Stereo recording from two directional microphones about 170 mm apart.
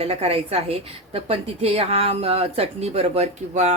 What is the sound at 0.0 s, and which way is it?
A woman's voice, 35° right (ahead or behind).